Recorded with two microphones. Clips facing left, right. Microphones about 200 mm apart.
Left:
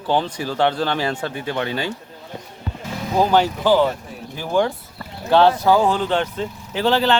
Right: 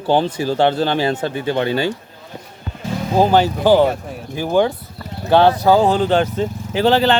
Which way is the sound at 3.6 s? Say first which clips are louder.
Right 6 dB; 55° right (ahead or behind).